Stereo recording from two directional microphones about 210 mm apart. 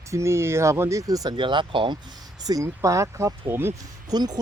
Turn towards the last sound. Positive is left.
turn(degrees=-20)  # may be behind; listen again after turning